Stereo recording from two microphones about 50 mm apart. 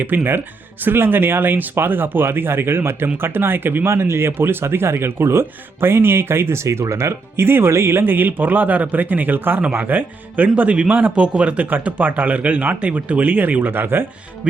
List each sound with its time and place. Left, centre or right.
0.1 s speech: right
3.8 s speech: right
6.7 s speech: right